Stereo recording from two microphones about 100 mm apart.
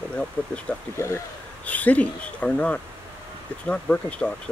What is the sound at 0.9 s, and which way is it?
Speech, 25° left (ahead or behind).